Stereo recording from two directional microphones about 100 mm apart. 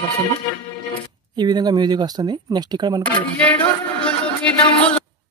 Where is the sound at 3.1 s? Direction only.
15° left (ahead or behind).